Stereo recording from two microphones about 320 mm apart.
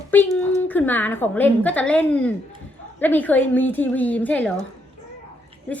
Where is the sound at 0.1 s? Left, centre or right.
Centre.